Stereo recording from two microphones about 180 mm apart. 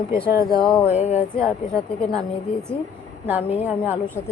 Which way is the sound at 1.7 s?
5° left (ahead or behind).